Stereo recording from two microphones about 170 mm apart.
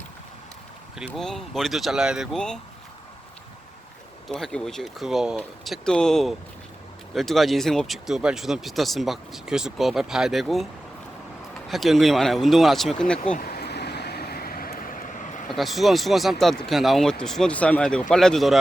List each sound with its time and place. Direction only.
0.9 s speech: centre (ahead or behind)
4.3 s speech: 5° left (ahead or behind)
11.7 s speech: centre (ahead or behind)
13.3 s a sound: 65° left (ahead or behind)
15.4 s speech: centre (ahead or behind)